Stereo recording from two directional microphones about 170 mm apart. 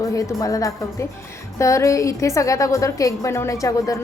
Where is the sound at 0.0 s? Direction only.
20° left (ahead or behind).